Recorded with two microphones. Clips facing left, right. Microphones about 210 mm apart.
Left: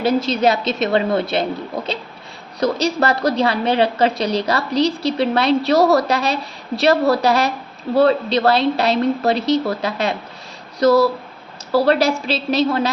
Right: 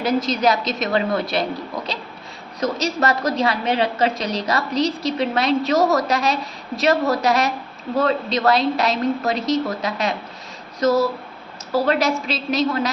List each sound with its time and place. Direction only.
0.0 s a woman's voice: 30° left (ahead or behind)
10.8 s a sound: 35° left (ahead or behind)
11.7 s a woman's voice: 35° left (ahead or behind)